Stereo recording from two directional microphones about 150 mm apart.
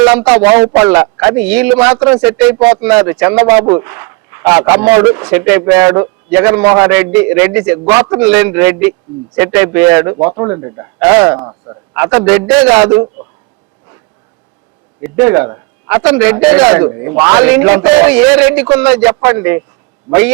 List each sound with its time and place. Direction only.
0.0 s a man's voice: 15° right (ahead or behind)
11.9 s a man's voice: 10° right (ahead or behind)
15.0 s a man's voice: 15° right (ahead or behind)